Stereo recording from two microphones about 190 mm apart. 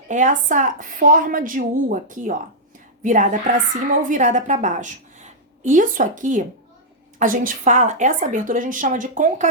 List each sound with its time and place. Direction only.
0.1 s a woman's voice: 45° right (ahead or behind)